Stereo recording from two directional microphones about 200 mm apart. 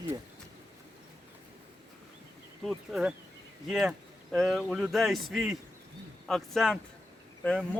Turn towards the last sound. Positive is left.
turn(degrees=10)  # may be behind; listen again after turning